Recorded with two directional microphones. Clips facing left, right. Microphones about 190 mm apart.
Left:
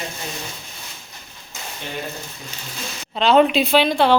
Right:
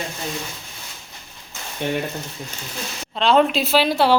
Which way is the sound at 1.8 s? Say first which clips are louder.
Right 9 dB; 60° right (ahead or behind).